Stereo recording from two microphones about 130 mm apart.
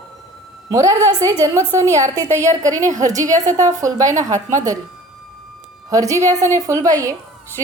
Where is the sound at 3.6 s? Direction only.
25° right (ahead or behind).